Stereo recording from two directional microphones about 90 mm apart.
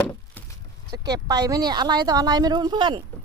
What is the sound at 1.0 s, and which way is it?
Speech, 45° right (ahead or behind).